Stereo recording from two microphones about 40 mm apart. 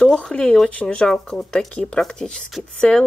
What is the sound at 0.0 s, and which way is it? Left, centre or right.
Speech, centre.